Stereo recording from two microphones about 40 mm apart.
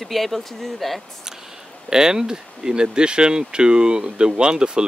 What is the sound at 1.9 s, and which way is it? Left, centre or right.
Speech, centre.